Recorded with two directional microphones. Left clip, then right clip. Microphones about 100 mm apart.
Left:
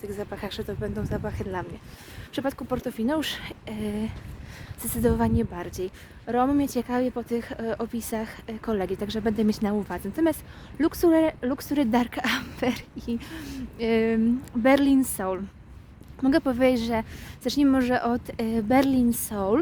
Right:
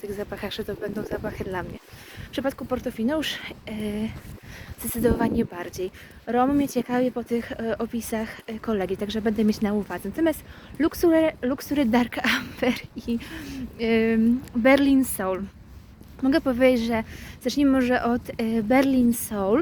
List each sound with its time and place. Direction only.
0.0 s speech: 40° left (ahead or behind)
2.3 s speech: 50° left (ahead or behind)
4.8 s speech: 40° left (ahead or behind)
13.4 s speech: 60° left (ahead or behind); by 15.4 s 35° left (ahead or behind)
16.3 s speech: 50° left (ahead or behind)